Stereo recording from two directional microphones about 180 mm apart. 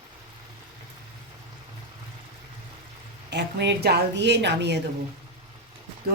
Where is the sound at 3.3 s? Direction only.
75° right (ahead or behind).